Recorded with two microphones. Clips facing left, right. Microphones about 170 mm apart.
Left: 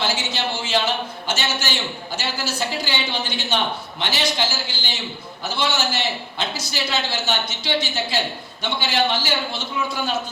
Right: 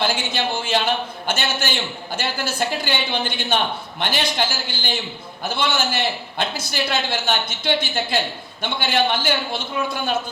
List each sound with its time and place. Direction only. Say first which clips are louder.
0.0 s a woman's voice: right 2 dB; 55° right (ahead or behind)